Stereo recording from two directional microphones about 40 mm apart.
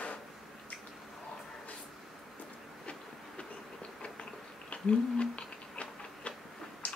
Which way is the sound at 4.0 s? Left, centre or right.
Left.